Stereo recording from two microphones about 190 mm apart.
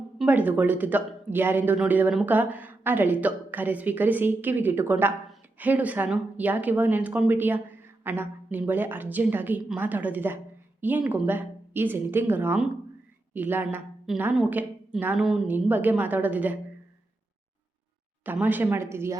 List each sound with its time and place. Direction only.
0.2 s a woman's voice: 10° right (ahead or behind)
18.3 s a woman's voice: 10° right (ahead or behind)